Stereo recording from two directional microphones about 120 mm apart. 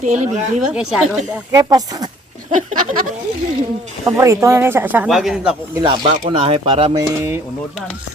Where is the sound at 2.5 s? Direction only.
90° right.